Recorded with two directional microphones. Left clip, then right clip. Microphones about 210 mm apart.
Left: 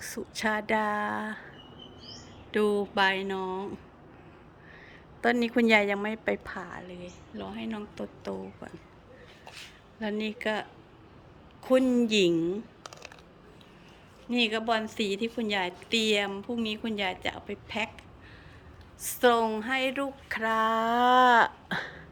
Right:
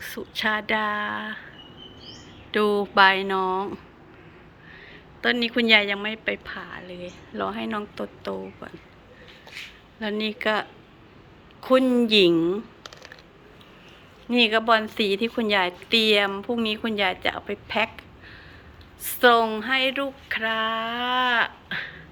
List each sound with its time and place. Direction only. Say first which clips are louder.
0.0 s a woman's voice: right 5 dB; 20° left (ahead or behind)
2.5 s a woman's voice: right 5 dB; 15° left (ahead or behind)
5.2 s a woman's voice: right 3 dB; 20° left (ahead or behind)
10.0 s a woman's voice: right 6 dB; 15° left (ahead or behind)
12.8 s a sound: right 2 dB; 25° left (ahead or behind)
14.3 s a woman's voice: right 8 dB; 10° left (ahead or behind)
19.0 s a woman's voice: right 6 dB; 15° left (ahead or behind); by 21.9 s 30° left (ahead or behind)